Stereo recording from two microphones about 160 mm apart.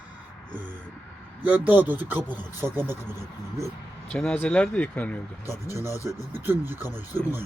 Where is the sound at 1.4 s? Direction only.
10° right (ahead or behind).